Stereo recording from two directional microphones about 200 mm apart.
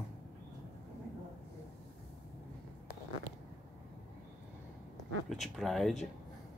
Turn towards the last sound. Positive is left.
turn(degrees=0)  # may be behind; listen again after turning